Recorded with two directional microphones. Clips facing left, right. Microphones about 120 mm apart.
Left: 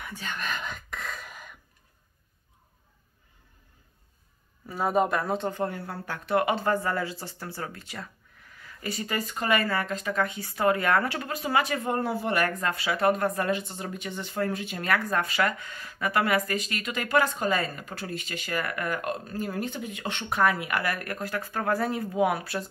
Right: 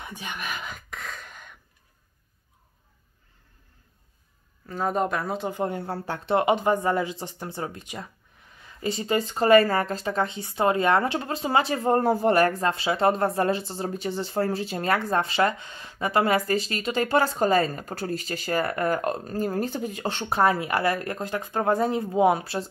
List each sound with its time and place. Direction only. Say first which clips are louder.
0.0 s whispering: even; 15° right (ahead or behind); by 1.6 s 5° left (ahead or behind)
4.6 s speech: left 1 dB; 10° left (ahead or behind)
5.5 s speech: right 3 dB; 20° right (ahead or behind)